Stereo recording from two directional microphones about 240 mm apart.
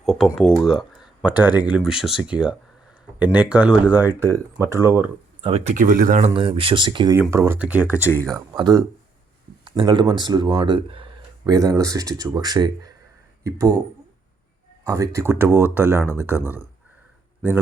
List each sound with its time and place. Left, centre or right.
0.0 s speech: centre
5.4 s speech: right
14.8 s speech: centre